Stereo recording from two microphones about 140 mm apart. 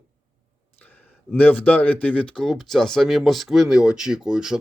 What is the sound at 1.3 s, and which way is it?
Speech, 10° left (ahead or behind).